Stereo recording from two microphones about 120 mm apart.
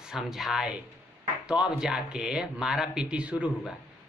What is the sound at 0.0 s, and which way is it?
Speech, 5° right (ahead or behind).